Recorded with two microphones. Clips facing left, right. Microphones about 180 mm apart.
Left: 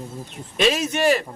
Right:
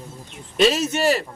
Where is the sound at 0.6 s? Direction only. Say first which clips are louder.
Right 2 dB; centre (ahead or behind).